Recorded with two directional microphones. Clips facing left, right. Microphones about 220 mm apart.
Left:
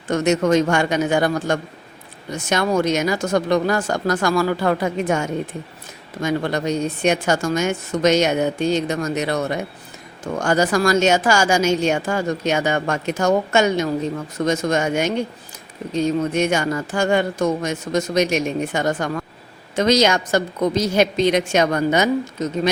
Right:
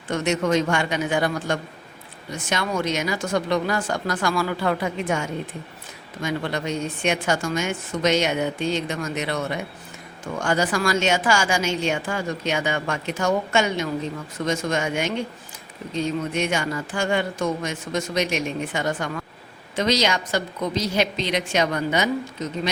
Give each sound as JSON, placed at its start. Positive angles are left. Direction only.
{"t": 0.1, "sound": "a woman's voice", "side_deg": 45}